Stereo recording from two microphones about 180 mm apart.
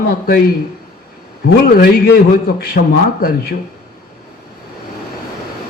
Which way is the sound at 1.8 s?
60° left (ahead or behind).